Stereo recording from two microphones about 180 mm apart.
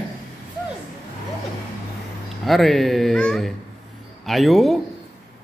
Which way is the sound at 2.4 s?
Centre (ahead or behind).